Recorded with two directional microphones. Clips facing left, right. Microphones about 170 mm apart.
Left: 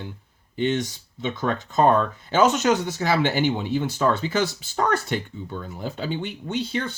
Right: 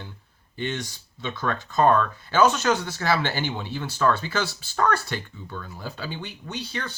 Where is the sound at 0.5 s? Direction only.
20° left (ahead or behind).